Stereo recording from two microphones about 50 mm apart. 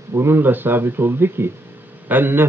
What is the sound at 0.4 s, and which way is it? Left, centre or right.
Speech, right.